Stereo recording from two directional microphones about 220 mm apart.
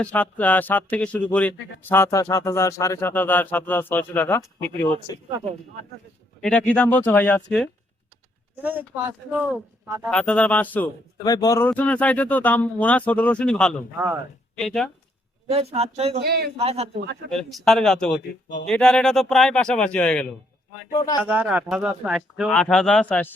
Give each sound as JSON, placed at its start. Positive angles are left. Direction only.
{"t": 0.0, "sound": "speech", "side_deg": 5}
{"t": 6.4, "sound": "speech", "side_deg": 5}
{"t": 9.0, "sound": "speech", "side_deg": -5}
{"t": 15.4, "sound": "speech", "side_deg": -25}
{"t": 16.2, "sound": "speech", "side_deg": -45}
{"t": 16.6, "sound": "speech", "side_deg": -25}
{"t": 17.3, "sound": "speech", "side_deg": 0}
{"t": 20.9, "sound": "speech", "side_deg": 15}
{"t": 21.2, "sound": "speech", "side_deg": -5}